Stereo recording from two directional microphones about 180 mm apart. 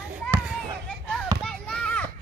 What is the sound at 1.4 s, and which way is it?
Children playing, 5° left (ahead or behind).